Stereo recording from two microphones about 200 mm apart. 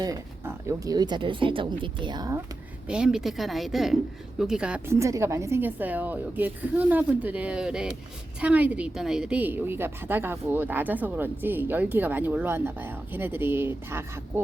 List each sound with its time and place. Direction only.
0.0 s speech: 15° right (ahead or behind)
2.8 s a woman's voice: 5° right (ahead or behind)